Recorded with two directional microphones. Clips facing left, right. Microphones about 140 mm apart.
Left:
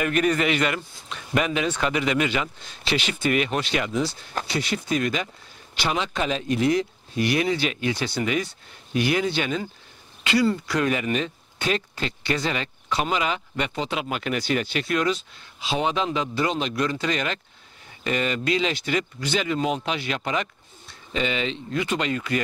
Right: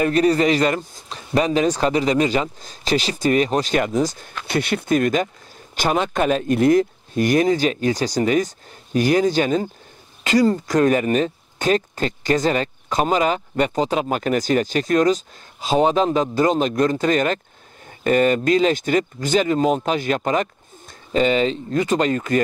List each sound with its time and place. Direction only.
0.0 s speech: 35° right (ahead or behind)
4.5 s speech: 55° right (ahead or behind)